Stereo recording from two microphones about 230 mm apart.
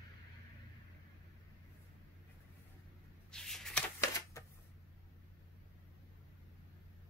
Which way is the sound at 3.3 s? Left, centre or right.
Centre.